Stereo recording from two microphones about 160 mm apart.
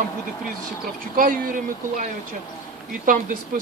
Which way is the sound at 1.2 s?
55° right (ahead or behind).